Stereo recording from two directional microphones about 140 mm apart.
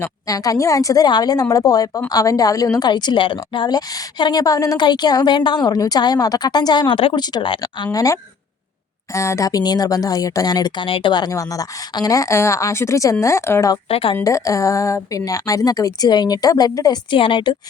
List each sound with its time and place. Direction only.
0.0 s a woman's voice: 25° left (ahead or behind)
7.9 s a woman's voice: 25° left (ahead or behind)
13.8 s a woman's voice: 40° left (ahead or behind)
14.3 s a woman's voice: 25° left (ahead or behind)